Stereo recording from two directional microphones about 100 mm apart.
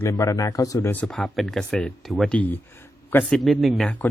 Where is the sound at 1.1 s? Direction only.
Centre (ahead or behind).